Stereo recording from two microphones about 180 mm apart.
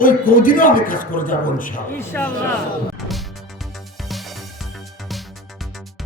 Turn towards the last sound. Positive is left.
turn(degrees=0)  # may be behind; listen again after turning